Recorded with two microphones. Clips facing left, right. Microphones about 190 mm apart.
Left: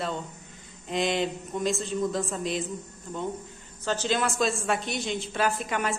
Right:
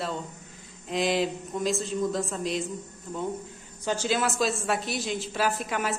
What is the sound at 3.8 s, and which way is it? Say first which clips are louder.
A woman's voice: even; 10° right (ahead or behind).